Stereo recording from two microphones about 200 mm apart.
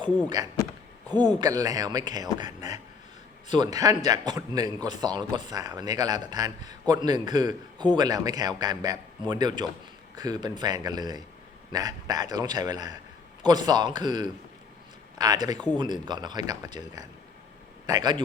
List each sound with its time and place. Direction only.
0.3 s a man's voice: 20° right (ahead or behind)